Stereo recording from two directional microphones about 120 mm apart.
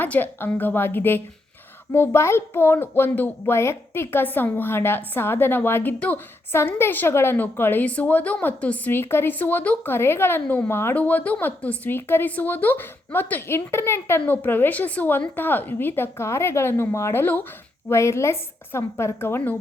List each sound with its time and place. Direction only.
0.0 s speech: 15° left (ahead or behind)